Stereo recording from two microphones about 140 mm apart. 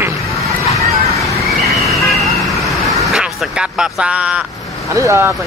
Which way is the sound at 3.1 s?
5° right (ahead or behind).